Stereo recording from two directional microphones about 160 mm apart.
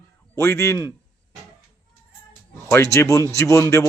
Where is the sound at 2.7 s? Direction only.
15° left (ahead or behind).